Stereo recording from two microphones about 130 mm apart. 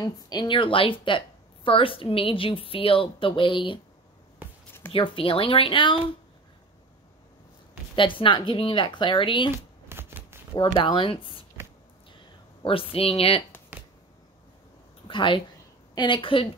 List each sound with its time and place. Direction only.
0.0 s a woman's voice: 30° left (ahead or behind)
4.4 s music: 15° right (ahead or behind)
4.9 s a woman's voice: 40° left (ahead or behind)
7.9 s speech: 40° left (ahead or behind)
9.8 s shuffling cards: 20° right (ahead or behind)
10.5 s a woman's voice: 45° left (ahead or behind)
12.6 s a woman's voice: 45° left (ahead or behind)
15.0 s speech: 40° left (ahead or behind)